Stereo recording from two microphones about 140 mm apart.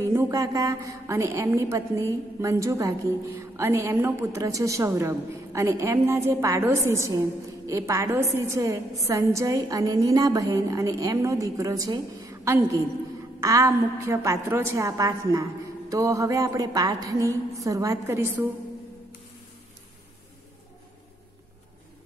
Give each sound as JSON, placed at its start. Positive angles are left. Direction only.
{"t": 0.0, "sound": "a woman's voice", "side_deg": -20}